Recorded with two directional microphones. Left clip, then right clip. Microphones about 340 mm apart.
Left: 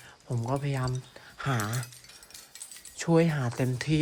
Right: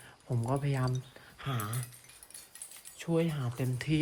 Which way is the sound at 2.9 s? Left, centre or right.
Centre.